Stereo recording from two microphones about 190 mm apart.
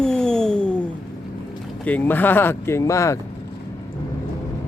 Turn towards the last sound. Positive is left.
turn(degrees=15)  # may be behind; listen again after turning